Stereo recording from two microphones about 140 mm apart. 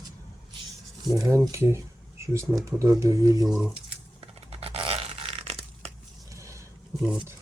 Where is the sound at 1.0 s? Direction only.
20° right (ahead or behind).